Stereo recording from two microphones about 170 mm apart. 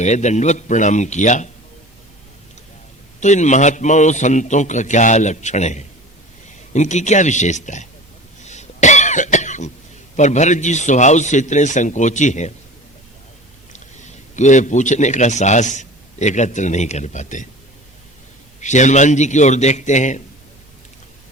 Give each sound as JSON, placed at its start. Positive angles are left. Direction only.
{"t": 0.0, "sound": "a man's voice", "side_deg": 45}
{"t": 3.2, "sound": "a man's voice", "side_deg": 45}
{"t": 8.4, "sound": "cough", "side_deg": 45}
{"t": 10.2, "sound": "a man's voice", "side_deg": 45}
{"t": 13.7, "sound": "a man's voice", "side_deg": 45}
{"t": 18.6, "sound": "a man's voice", "side_deg": 45}